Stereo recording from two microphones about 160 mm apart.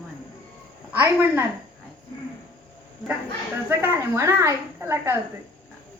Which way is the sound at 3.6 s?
15° right (ahead or behind).